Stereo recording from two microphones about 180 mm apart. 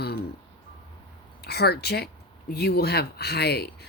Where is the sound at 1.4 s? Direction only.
60° left (ahead or behind).